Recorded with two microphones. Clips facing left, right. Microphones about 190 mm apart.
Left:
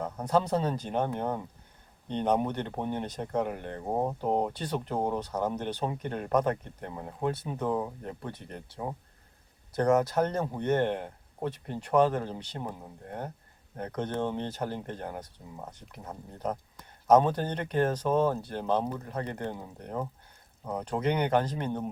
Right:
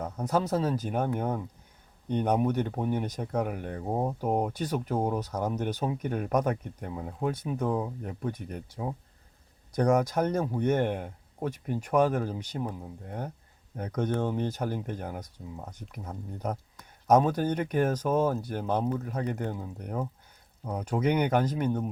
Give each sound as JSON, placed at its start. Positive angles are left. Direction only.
{"t": 0.0, "sound": "speech", "side_deg": -10}
{"t": 13.7, "sound": "speech", "side_deg": -10}